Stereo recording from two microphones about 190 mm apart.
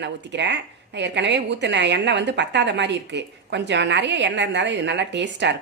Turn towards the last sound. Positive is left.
turn(degrees=-65)  # may be behind; listen again after turning